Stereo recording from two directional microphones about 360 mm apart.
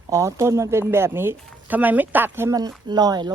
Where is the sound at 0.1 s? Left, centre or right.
Centre.